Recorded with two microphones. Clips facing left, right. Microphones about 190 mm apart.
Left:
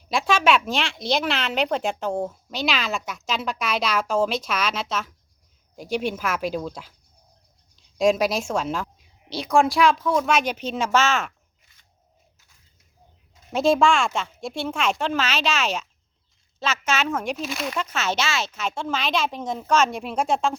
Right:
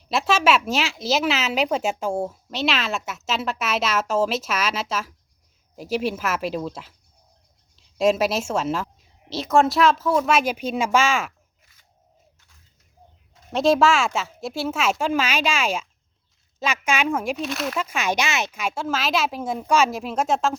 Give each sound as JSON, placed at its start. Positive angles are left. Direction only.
{"t": 0.0, "sound": "speech", "side_deg": -5}
{"t": 7.9, "sound": "speech", "side_deg": -5}
{"t": 13.5, "sound": "speech", "side_deg": 0}